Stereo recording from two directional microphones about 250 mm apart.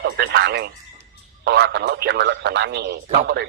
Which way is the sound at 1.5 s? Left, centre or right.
Right.